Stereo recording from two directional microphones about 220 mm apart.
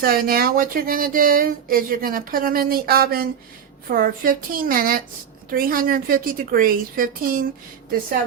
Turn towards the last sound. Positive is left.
turn(degrees=-40)  # may be behind; listen again after turning